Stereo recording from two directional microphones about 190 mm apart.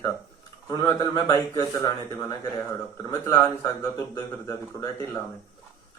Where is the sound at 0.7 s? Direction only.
20° left (ahead or behind).